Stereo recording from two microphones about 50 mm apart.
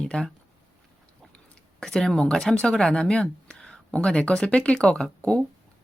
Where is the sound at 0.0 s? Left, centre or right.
Centre.